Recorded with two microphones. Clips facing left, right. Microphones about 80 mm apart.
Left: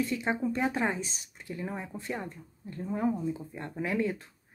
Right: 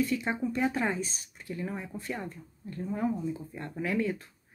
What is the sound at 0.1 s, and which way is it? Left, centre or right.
Speech, left.